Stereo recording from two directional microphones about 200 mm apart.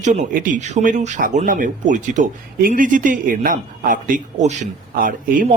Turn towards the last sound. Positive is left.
turn(degrees=-45)  # may be behind; listen again after turning